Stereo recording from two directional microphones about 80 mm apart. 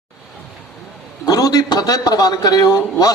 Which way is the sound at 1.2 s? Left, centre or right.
Left.